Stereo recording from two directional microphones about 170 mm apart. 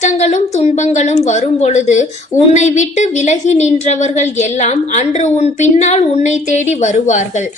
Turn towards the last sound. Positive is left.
turn(degrees=45)  # may be behind; listen again after turning